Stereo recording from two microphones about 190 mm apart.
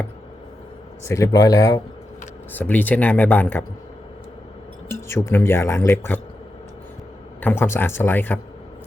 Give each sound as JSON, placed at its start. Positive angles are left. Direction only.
{"t": 1.0, "sound": "speech", "side_deg": 15}
{"t": 4.9, "sound": "speech", "side_deg": 15}
{"t": 7.4, "sound": "speech", "side_deg": 10}